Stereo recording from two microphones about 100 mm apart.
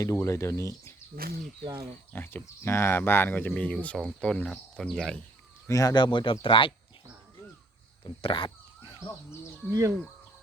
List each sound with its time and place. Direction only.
0.0 s speech: 30° left (ahead or behind)
1.6 s speech: 70° right (ahead or behind)
2.1 s speech: 20° left (ahead or behind)
5.6 s speech: 35° left (ahead or behind); by 6.7 s 60° left (ahead or behind)
8.0 s crow: 60° left (ahead or behind)
9.0 s speech: 25° left (ahead or behind)
9.6 s speech: 30° right (ahead or behind)